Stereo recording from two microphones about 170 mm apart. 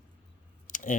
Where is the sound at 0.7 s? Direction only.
50° left (ahead or behind).